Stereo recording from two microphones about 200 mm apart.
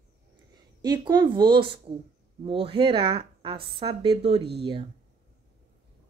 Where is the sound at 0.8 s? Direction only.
20° right (ahead or behind).